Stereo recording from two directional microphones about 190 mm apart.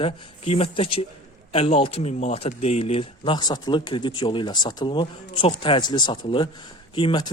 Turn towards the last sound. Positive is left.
turn(degrees=25)  # may be behind; listen again after turning